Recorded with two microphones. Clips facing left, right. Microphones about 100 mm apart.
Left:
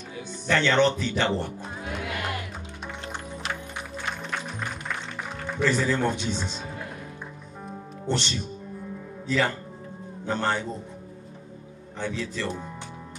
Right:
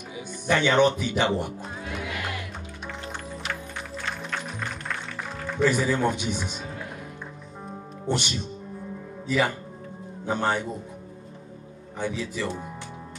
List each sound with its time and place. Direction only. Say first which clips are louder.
0.5 s speech: right 1 dB; 15° right (ahead or behind)
4.3 s music: even; 5° left (ahead or behind)
5.6 s speech: right 1 dB; 15° right (ahead or behind)
8.1 s speech: right 1 dB; 10° right (ahead or behind)
12.0 s speech: right 1 dB; 10° right (ahead or behind)